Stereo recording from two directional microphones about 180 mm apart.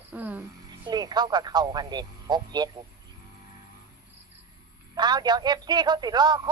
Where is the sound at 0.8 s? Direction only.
20° right (ahead or behind).